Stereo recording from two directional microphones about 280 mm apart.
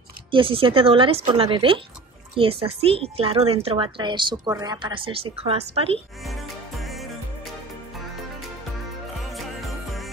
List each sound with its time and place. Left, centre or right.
0.3 s a woman's voice: centre
6.2 s music: centre